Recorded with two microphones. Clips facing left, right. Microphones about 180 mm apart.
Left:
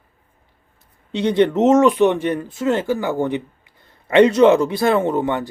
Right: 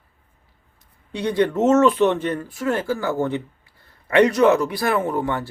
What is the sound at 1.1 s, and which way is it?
Speech, 25° left (ahead or behind).